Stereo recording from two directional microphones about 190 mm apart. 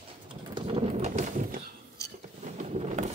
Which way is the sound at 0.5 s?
30° right (ahead or behind).